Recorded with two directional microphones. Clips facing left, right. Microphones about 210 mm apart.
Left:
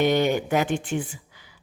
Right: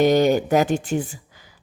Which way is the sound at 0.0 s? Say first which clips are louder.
Right 5 dB; 40° right (ahead or behind).